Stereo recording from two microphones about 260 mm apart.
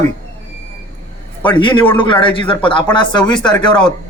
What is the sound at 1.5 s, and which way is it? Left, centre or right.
A man's voice, centre.